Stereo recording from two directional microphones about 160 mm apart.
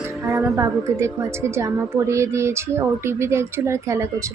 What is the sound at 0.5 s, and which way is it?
A woman's voice, 15° right (ahead or behind).